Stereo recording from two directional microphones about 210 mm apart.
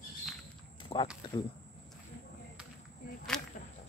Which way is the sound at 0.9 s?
25° left (ahead or behind).